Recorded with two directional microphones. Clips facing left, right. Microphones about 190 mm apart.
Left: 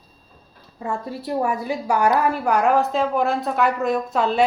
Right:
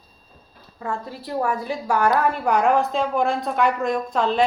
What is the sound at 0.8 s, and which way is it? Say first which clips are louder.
A woman's voice: left 2 dB; 25° left (ahead or behind).